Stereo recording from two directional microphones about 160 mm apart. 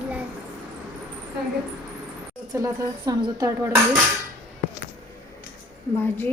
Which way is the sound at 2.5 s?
20° right (ahead or behind).